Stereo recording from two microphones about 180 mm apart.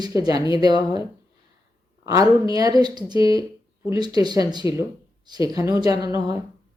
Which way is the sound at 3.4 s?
25° left (ahead or behind).